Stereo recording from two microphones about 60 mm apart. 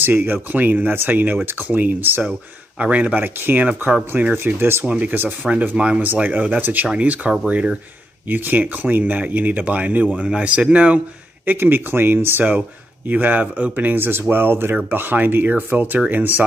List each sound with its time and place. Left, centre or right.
0.0 s speech: right
2.8 s speech: right
3.3 s speech: right
4.1 s speech: right
4.6 s speech: right
4.8 s speech: right
5.8 s speech: centre
6.0 s speech: right
11.4 s speech: right